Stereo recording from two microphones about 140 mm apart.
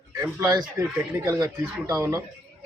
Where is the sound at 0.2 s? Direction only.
25° right (ahead or behind).